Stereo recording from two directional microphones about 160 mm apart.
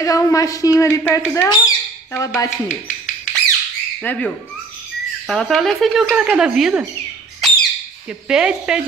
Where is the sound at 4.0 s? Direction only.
10° left (ahead or behind).